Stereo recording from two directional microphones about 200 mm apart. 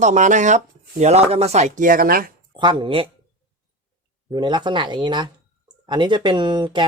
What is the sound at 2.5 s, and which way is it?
Speech, 20° right (ahead or behind).